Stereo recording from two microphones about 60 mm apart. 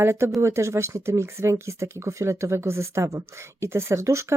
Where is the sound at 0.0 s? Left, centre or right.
Right.